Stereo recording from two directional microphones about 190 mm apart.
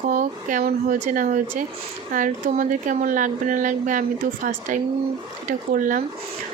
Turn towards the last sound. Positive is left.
turn(degrees=-45)  # may be behind; listen again after turning